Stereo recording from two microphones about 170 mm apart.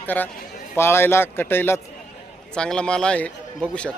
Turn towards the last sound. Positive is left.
turn(degrees=5)  # may be behind; listen again after turning